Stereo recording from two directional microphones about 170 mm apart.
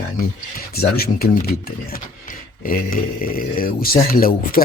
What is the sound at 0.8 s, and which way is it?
Speech, 65° left (ahead or behind).